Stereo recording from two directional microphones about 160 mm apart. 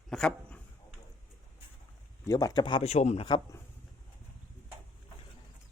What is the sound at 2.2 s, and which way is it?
A man's voice, 20° left (ahead or behind).